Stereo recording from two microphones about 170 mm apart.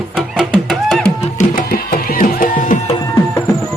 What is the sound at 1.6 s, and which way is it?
Music, 60° left (ahead or behind).